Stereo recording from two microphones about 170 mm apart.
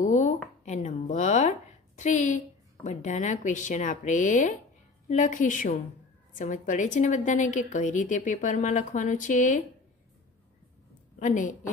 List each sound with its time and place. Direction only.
0.0 s a sound: 45° left (ahead or behind)
0.7 s a woman's voice: 45° left (ahead or behind)
11.1 s a woman's voice: 50° left (ahead or behind)